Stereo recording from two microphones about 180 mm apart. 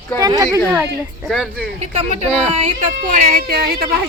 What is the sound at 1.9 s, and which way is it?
Speech, 35° right (ahead or behind).